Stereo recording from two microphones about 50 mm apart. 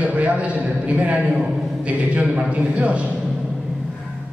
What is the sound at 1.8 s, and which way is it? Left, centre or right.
A man's voice, right.